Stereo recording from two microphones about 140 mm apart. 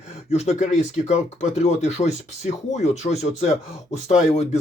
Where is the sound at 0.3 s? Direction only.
50° left (ahead or behind).